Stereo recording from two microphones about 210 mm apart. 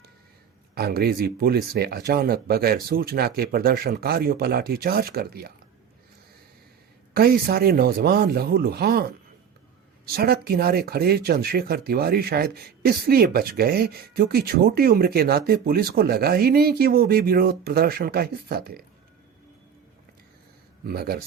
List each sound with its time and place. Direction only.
0.8 s speech: 45° right (ahead or behind)
7.1 s speech: 45° right (ahead or behind)
20.8 s speech: 45° right (ahead or behind)